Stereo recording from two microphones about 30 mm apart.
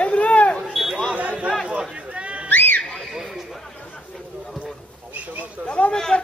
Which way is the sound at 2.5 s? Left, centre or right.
Left.